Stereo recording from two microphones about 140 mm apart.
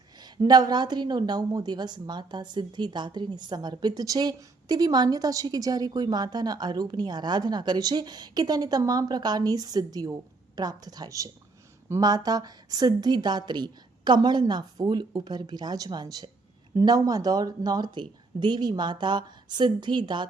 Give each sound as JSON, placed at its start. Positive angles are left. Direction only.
{"t": 0.2, "sound": "a woman's voice", "side_deg": -30}